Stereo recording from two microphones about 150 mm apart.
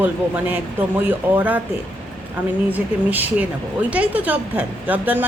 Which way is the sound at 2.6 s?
10° right (ahead or behind).